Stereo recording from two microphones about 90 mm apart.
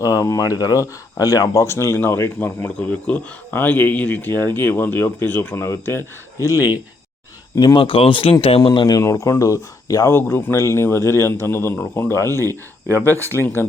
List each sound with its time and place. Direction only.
0.0 s speech: 40° left (ahead or behind)
7.6 s speech: 60° left (ahead or behind)
9.0 s speech: 40° left (ahead or behind)
10.1 s speech: 25° left (ahead or behind)
12.5 s speech: 30° right (ahead or behind)
13.1 s speech: 20° left (ahead or behind)